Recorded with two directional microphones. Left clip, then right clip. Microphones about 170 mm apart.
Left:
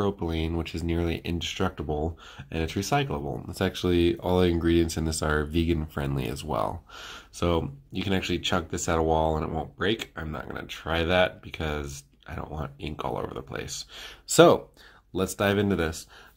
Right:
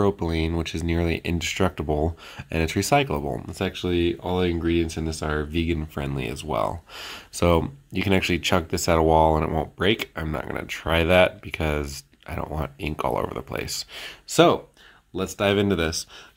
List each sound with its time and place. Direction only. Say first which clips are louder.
0.0 s speech: right 5 dB; 25° right (ahead or behind)
3.4 s speech: even; centre (ahead or behind)
7.0 s speech: right 8 dB; 30° right (ahead or behind)
14.2 s speech: even; centre (ahead or behind)
15.4 s speech: right 4 dB; 15° right (ahead or behind)